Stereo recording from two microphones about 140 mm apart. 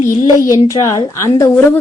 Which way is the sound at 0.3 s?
25° left (ahead or behind).